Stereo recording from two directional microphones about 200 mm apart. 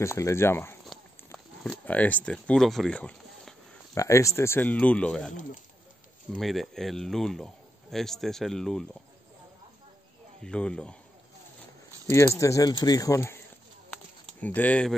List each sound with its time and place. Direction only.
0.0 s speech: 15° left (ahead or behind)
0.8 s a sound: centre (ahead or behind)
4.0 s speech: 15° left (ahead or behind)
6.3 s speech: centre (ahead or behind)
10.4 s speech: 5° left (ahead or behind)
12.1 s speech: 15° left (ahead or behind)
14.4 s speech: 10° left (ahead or behind)